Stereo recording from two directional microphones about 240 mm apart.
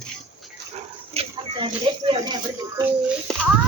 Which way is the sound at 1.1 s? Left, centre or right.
Right.